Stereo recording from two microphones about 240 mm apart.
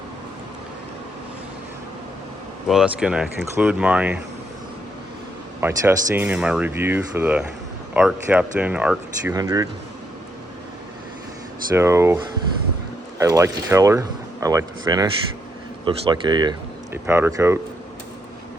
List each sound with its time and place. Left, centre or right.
2.6 s speech: centre
5.5 s speech: centre
11.7 s speech: centre